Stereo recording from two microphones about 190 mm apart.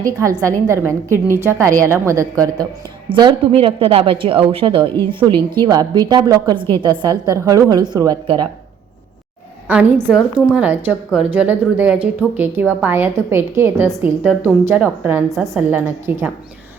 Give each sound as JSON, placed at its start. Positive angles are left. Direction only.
{"t": 0.0, "sound": "a woman's voice", "side_deg": -15}
{"t": 9.6, "sound": "a woman's voice", "side_deg": -5}